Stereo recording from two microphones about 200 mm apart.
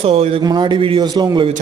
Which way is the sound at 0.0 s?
30° right (ahead or behind).